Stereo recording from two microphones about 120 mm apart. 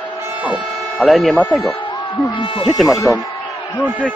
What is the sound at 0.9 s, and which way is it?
Speech, centre (ahead or behind).